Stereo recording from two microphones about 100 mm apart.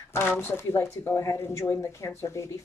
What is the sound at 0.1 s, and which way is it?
Speech, 20° left (ahead or behind).